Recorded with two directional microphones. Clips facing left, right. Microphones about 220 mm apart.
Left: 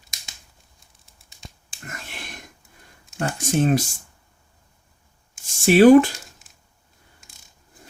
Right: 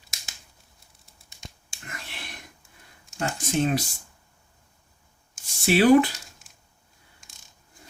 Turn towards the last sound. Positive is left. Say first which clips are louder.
# left 6 dB
turn(degrees=45)  # may be behind; listen again after turning